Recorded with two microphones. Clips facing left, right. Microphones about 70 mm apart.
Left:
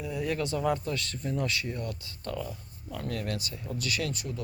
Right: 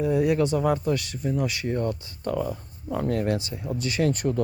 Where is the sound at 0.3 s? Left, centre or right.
Right.